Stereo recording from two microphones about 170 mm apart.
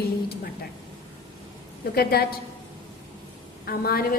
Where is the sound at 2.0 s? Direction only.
65° left (ahead or behind).